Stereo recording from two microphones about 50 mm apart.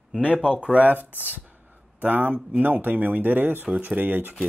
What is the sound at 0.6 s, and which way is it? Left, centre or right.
Speech, right.